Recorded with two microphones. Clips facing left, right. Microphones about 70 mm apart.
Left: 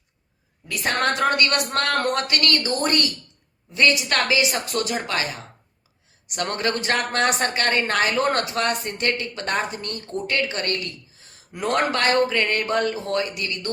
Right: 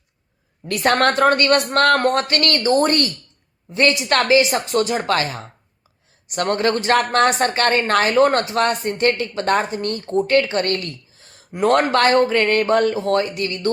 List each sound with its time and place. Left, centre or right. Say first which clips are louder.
0.9 s a woman's voice: right 7 dB; right
1.1 s a woman's voice: right 6 dB; right
2.0 s a woman's voice: right 4 dB; right